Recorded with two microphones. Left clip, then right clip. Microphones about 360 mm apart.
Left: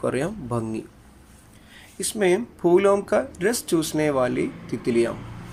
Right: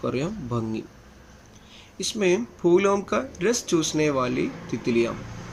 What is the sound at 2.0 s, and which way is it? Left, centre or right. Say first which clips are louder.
Speech: left 2 dB; centre.